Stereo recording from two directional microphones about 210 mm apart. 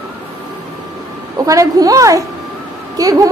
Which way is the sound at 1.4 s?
15° right (ahead or behind).